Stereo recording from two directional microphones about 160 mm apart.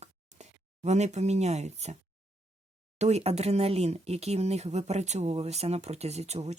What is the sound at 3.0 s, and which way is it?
Speech, 45° right (ahead or behind).